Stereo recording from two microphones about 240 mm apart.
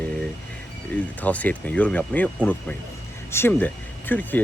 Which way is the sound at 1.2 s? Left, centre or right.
Centre.